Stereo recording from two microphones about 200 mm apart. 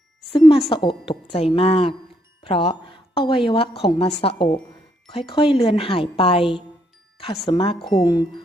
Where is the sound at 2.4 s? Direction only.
25° left (ahead or behind).